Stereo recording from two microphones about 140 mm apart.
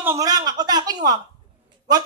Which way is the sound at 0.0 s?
25° right (ahead or behind).